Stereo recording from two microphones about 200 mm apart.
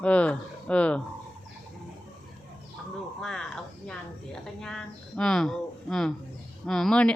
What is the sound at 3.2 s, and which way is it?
A woman's voice, centre (ahead or behind).